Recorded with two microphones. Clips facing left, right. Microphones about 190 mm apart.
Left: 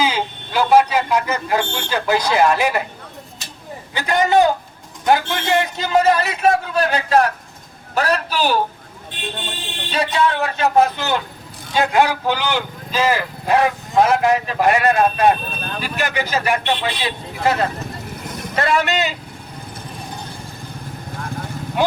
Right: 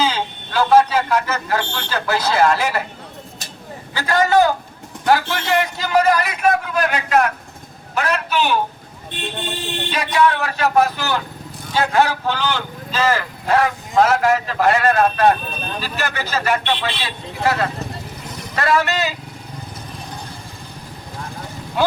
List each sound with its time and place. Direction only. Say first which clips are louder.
0.0 s a sound: even; 10° left (ahead or behind)
3.9 s a man's voice: even; 20° left (ahead or behind); by 8.5 s 35° left (ahead or behind)
9.9 s speech: right 1 dB; 25° left (ahead or behind)
21.8 s speech: even; 20° left (ahead or behind)